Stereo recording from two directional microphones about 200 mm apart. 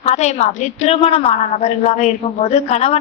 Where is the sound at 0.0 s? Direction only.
35° left (ahead or behind).